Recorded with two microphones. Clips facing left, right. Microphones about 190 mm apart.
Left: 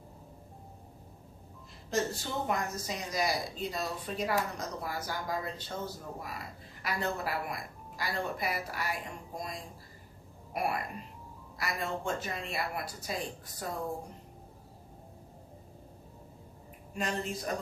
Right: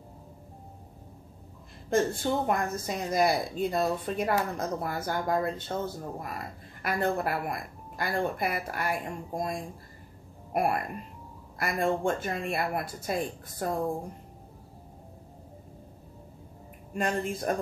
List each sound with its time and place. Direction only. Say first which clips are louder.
1.9 s speech: right 7 dB; 55° right (ahead or behind)
16.9 s speech: right 5 dB; 55° right (ahead or behind)